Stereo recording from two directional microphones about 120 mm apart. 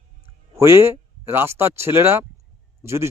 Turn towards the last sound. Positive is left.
turn(degrees=-25)  # may be behind; listen again after turning